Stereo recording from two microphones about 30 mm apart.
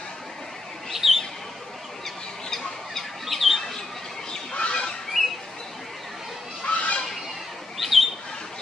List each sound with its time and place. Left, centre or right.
0.9 s bird: centre
2.0 s bird: centre
4.6 s a sound: left
5.2 s squawk: centre
6.6 s a sound: left
7.7 s bird: centre